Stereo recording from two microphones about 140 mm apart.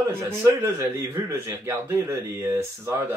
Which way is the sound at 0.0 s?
20° right (ahead or behind).